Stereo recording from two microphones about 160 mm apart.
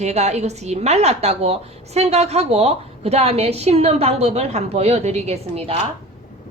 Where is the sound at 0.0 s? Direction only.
45° right (ahead or behind).